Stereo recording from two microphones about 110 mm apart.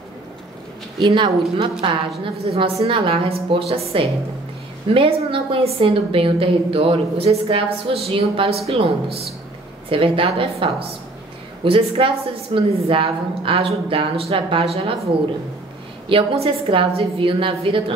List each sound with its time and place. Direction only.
0.9 s a woman's voice: 45° right (ahead or behind)
1.6 s a woman's voice: 55° right (ahead or behind)
16.1 s a woman's voice: 55° right (ahead or behind)